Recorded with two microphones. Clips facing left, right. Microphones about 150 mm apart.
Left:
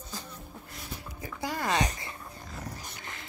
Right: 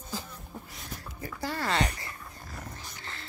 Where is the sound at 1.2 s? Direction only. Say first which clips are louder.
Even; 15° left (ahead or behind).